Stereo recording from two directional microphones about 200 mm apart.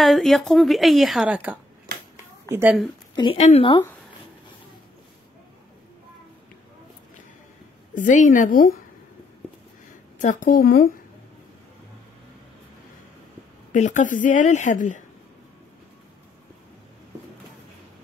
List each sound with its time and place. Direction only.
0.0 s a woman's voice: centre (ahead or behind)
3.2 s speech: 30° left (ahead or behind)
7.9 s a woman's voice: 40° left (ahead or behind)
10.1 s a woman's voice: 40° left (ahead or behind)
13.7 s a woman's voice: 40° left (ahead or behind)